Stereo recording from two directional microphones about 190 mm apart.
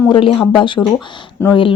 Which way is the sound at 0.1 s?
25° left (ahead or behind).